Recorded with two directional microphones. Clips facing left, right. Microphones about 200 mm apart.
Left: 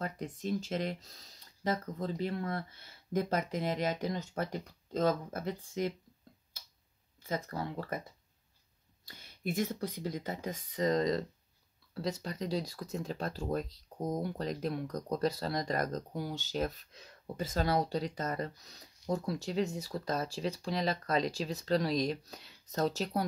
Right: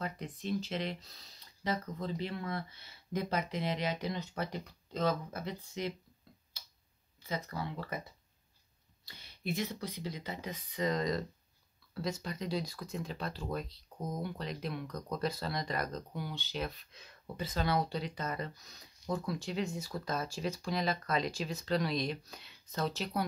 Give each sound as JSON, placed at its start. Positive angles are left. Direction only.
{"t": 0.0, "sound": "speech", "side_deg": 45}
{"t": 6.5, "sound": "tick-tock", "side_deg": 50}
{"t": 7.2, "sound": "speech", "side_deg": 50}
{"t": 9.0, "sound": "speech", "side_deg": 50}